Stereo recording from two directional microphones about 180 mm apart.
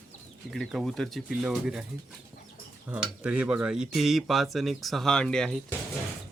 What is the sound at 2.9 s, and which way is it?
Speech, 5° right (ahead or behind).